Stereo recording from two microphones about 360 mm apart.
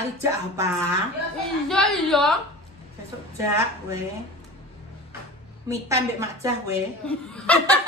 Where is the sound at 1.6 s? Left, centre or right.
Centre.